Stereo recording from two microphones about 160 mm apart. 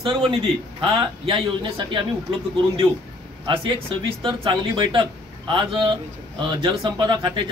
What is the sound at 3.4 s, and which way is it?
A man's voice, 30° right (ahead or behind).